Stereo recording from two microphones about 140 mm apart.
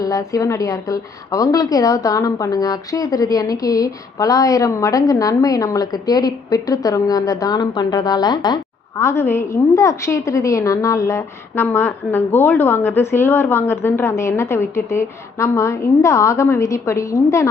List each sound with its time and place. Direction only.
0.0 s a woman's voice: 25° left (ahead or behind)